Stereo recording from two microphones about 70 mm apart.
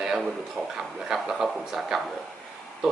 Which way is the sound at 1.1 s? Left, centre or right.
Centre.